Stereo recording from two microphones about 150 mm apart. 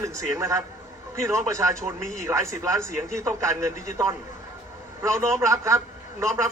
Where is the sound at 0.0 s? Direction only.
20° right (ahead or behind).